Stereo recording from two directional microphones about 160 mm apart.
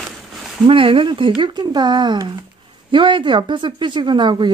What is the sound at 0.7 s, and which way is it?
Speech, 35° right (ahead or behind).